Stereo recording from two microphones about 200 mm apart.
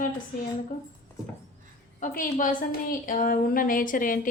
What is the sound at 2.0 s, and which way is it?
A woman's voice, 45° left (ahead or behind).